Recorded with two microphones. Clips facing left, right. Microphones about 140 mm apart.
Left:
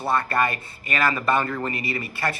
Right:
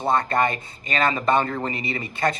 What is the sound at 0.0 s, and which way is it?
Speech, 20° right (ahead or behind).